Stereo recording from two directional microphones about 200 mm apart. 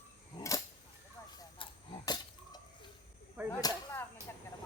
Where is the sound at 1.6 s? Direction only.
20° left (ahead or behind).